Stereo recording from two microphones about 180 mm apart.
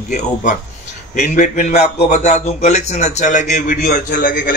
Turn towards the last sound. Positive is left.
turn(degrees=50)  # may be behind; listen again after turning